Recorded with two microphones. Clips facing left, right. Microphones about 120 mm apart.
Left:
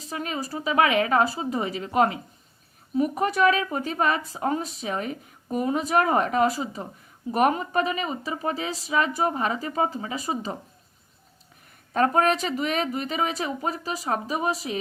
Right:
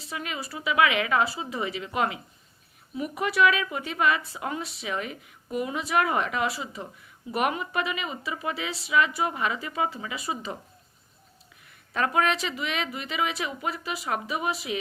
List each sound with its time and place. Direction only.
0.0 s speech: 40° left (ahead or behind)
11.9 s speech: 40° left (ahead or behind)